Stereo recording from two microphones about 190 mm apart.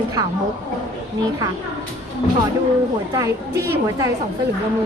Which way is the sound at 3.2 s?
15° right (ahead or behind).